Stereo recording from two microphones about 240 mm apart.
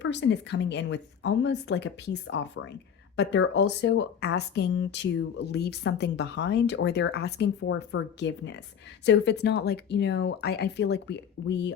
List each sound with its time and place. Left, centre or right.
0.0 s speech: left